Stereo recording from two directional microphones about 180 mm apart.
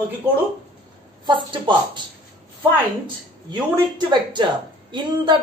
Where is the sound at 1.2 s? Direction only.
25° right (ahead or behind).